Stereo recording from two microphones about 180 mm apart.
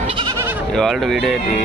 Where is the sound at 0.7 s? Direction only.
Centre (ahead or behind).